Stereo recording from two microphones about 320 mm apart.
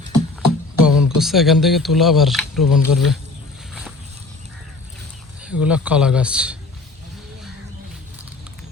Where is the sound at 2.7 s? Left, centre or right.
Left.